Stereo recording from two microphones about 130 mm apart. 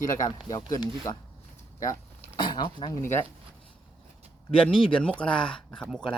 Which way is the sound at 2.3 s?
35° left (ahead or behind).